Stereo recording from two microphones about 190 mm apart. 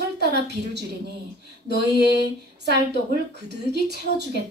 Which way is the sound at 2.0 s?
60° right (ahead or behind).